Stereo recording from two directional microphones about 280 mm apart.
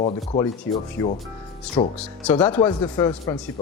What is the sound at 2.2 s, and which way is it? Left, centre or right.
Speech, centre.